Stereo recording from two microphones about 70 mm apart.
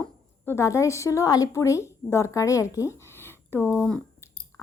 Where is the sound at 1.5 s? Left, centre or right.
Left.